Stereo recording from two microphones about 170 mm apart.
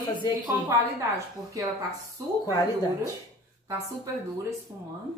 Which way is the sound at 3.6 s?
15° right (ahead or behind).